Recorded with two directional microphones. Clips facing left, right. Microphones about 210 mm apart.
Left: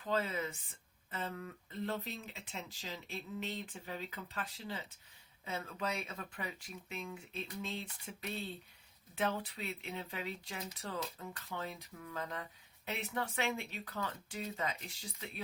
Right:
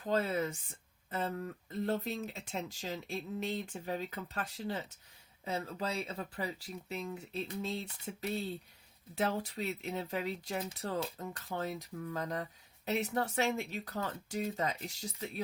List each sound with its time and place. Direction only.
0.0 s speech: 40° right (ahead or behind)